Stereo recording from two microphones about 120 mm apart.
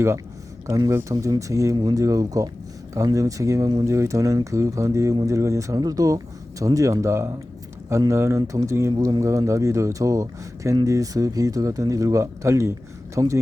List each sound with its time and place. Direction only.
0.7 s speech: 25° right (ahead or behind)